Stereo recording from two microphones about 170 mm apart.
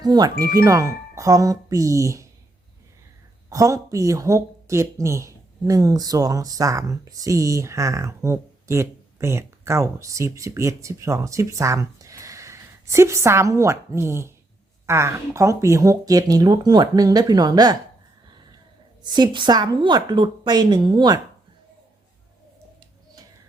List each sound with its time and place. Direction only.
0.0 s speech: 25° right (ahead or behind)
3.5 s speech: 20° right (ahead or behind)
19.0 s speech: 25° right (ahead or behind)